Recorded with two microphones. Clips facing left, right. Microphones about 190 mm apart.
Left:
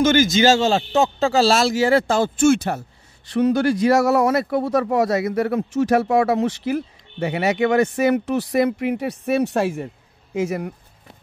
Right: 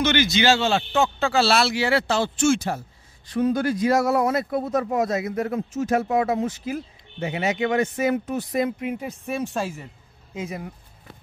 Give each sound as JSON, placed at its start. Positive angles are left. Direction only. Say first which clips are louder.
{"t": 0.0, "sound": "a man's voice", "louder": "left 5 dB", "side_deg": 45}
{"t": 3.3, "sound": "speech", "louder": "left 4 dB", "side_deg": 75}
{"t": 10.3, "sound": "speech", "louder": "left 9 dB", "side_deg": 75}